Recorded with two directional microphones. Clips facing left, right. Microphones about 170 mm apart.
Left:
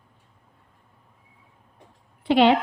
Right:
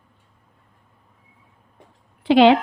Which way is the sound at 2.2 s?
90° right.